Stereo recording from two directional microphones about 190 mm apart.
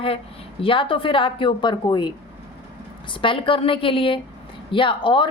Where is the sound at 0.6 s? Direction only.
25° left (ahead or behind).